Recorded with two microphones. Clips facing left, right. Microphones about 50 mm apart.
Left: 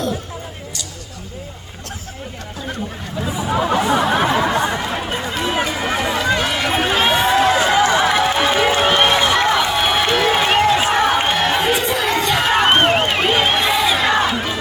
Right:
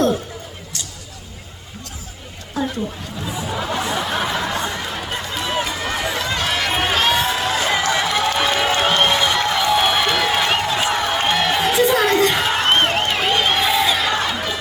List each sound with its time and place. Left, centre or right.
3.2 s chatter: centre
5.6 s run: centre
6.4 s a sound: centre
7.9 s run: centre
9.6 s crowd: centre
11.3 s a sound: centre
12.3 s crowd: centre
14.3 s battle cry: centre